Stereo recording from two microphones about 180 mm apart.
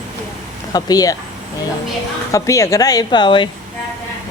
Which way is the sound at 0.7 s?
20° left (ahead or behind).